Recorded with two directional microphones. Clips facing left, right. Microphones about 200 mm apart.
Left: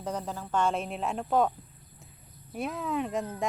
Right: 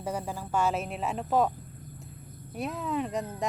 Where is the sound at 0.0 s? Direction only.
10° right (ahead or behind).